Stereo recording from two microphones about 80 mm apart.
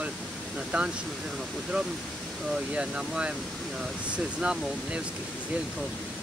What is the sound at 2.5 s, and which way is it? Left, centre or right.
Speech, centre.